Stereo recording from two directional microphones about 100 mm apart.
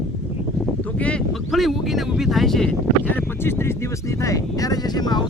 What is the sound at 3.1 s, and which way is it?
Speech, 25° left (ahead or behind).